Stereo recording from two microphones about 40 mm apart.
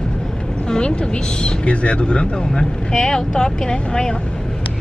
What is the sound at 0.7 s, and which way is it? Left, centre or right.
Speech, left.